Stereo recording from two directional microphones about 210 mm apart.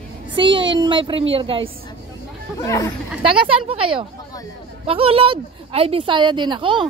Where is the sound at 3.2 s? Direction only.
25° right (ahead or behind).